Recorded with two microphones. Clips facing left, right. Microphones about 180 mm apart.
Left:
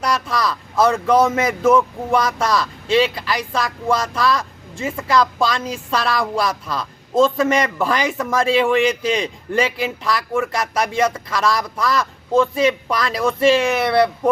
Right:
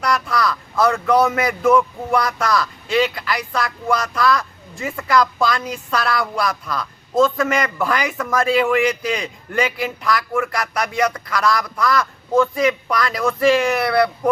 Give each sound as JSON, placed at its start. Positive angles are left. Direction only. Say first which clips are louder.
{"t": 0.0, "sound": "a woman's voice", "louder": "right 1 dB", "side_deg": 25}